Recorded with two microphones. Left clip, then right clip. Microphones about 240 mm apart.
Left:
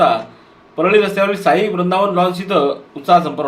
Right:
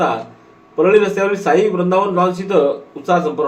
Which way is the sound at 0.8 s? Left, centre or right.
Left.